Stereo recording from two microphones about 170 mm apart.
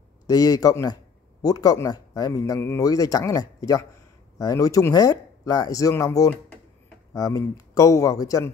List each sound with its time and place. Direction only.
0.3 s speech: 20° left (ahead or behind)